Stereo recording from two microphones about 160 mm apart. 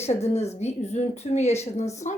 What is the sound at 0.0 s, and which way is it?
A woman's voice, 40° left (ahead or behind).